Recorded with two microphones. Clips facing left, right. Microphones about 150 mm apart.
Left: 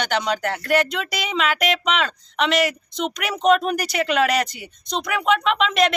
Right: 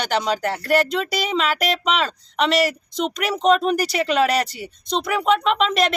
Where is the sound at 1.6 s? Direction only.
Centre (ahead or behind).